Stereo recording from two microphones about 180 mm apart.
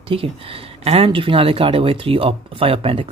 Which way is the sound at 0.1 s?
30° right (ahead or behind).